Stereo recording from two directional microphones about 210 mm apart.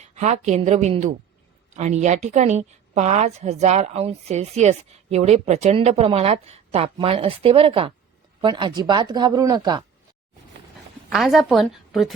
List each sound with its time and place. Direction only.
0.0 s a woman's voice: 35° right (ahead or behind); by 9.8 s 20° right (ahead or behind)
11.1 s a woman's voice: centre (ahead or behind)